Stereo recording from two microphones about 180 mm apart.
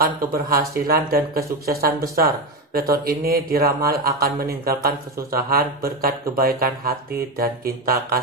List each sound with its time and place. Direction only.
0.0 s speech: 55° right (ahead or behind)